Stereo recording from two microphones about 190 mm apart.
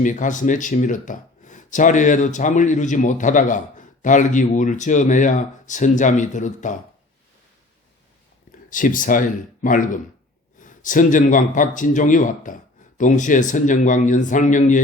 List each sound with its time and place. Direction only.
0.0 s speech: 40° left (ahead or behind)
8.7 s a man's voice: 45° left (ahead or behind)